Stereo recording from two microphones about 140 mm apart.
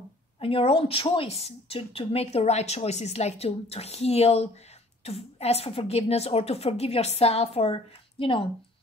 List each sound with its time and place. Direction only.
0.4 s a woman's voice: 40° left (ahead or behind)